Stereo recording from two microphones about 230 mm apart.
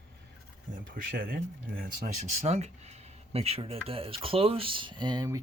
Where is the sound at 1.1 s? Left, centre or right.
Right.